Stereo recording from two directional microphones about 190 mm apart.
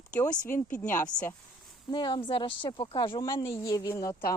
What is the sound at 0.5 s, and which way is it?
Speech, 10° left (ahead or behind).